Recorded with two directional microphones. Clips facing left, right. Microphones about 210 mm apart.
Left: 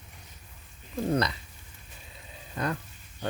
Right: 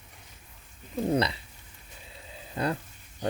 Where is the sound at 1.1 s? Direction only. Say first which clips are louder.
Right 2 dB; 30° right (ahead or behind).